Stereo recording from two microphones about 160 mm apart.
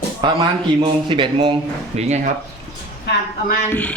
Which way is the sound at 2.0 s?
45° right (ahead or behind).